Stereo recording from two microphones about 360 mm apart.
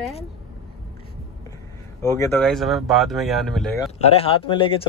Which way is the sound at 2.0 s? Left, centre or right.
Centre.